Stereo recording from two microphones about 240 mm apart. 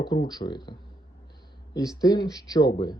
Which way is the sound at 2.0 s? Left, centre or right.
Centre.